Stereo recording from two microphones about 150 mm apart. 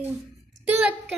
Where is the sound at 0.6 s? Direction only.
10° right (ahead or behind).